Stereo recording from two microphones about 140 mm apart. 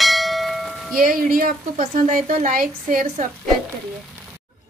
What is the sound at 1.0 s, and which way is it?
A woman's voice, 90° right.